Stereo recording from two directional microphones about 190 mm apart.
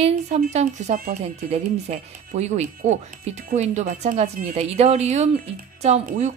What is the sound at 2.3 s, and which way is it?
Speech, 40° right (ahead or behind).